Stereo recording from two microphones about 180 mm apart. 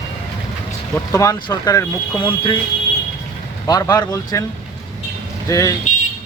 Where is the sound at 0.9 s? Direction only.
15° left (ahead or behind).